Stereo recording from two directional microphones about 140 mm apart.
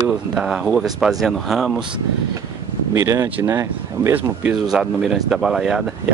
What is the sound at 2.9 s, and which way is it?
Speech, 20° right (ahead or behind).